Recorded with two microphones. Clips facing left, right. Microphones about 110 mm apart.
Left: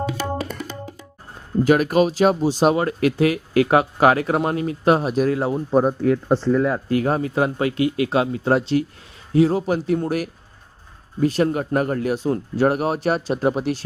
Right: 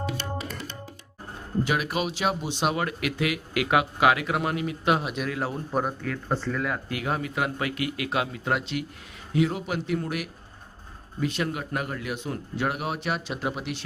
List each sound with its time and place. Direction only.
1.6 s speech: 45° left (ahead or behind)